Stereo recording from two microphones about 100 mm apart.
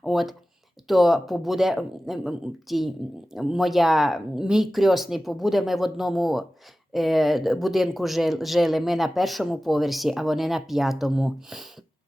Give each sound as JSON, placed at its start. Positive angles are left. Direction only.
{"t": 0.0, "sound": "speech", "side_deg": 0}